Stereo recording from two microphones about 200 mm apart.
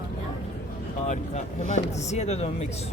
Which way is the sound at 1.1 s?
35° left (ahead or behind).